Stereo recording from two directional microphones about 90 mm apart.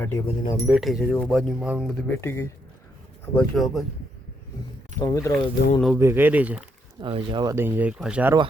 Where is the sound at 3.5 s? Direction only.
Centre (ahead or behind).